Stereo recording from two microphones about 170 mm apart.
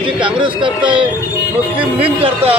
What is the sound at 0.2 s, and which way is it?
Yodeling, 30° right (ahead or behind).